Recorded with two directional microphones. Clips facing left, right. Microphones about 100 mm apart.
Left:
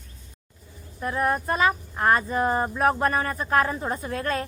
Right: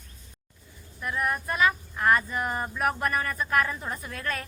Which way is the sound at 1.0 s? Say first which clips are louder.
Left 5 dB; 35° left (ahead or behind).